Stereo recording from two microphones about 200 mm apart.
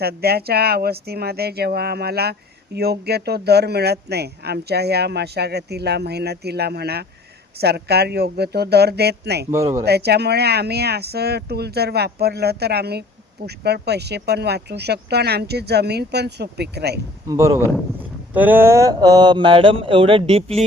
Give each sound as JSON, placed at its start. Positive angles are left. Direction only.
{"t": 0.0, "sound": "speech", "side_deg": -50}
{"t": 9.5, "sound": "speech", "side_deg": -15}
{"t": 9.8, "sound": "speech", "side_deg": -55}
{"t": 17.2, "sound": "speech", "side_deg": -15}